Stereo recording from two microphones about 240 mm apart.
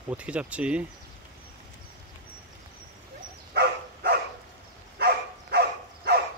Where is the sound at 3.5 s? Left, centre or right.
Right.